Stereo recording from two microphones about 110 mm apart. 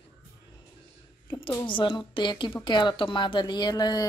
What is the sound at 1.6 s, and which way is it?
A woman's voice, 50° left (ahead or behind).